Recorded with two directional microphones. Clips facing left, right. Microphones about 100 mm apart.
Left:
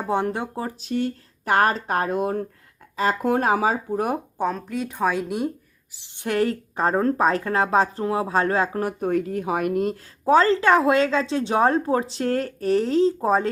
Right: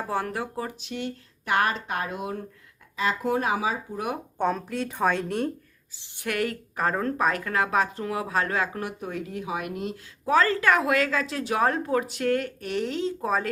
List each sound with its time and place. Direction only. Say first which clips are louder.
0.1 s a woman's voice: left 7 dB; 25° left (ahead or behind); by 4.2 s 40° left (ahead or behind)
4.4 s a woman's voice: left 1 dB; centre (ahead or behind)
6.1 s a woman's voice: left 6 dB; 30° left (ahead or behind); by 9.9 s 45° left (ahead or behind)
10.2 s a woman's voice: left 5 dB; 30° left (ahead or behind)